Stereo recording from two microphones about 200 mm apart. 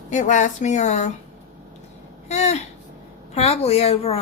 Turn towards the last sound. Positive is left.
turn(degrees=30)  # may be behind; listen again after turning